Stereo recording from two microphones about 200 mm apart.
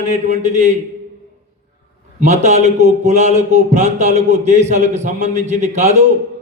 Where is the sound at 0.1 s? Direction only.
35° right (ahead or behind).